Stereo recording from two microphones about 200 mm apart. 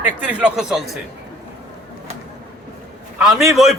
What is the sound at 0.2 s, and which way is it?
Speech, 5° right (ahead or behind).